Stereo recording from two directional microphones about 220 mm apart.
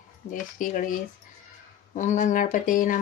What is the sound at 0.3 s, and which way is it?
Speech, 35° left (ahead or behind).